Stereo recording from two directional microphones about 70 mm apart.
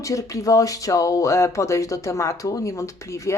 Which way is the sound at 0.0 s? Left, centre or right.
Left.